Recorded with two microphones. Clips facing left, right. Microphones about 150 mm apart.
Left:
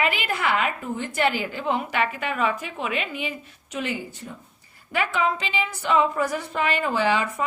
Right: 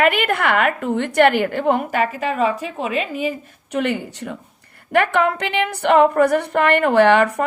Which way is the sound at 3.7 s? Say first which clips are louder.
Right 8 dB; 60° right (ahead or behind).